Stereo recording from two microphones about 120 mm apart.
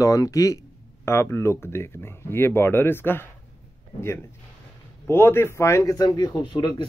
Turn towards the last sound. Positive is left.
turn(degrees=40)  # may be behind; listen again after turning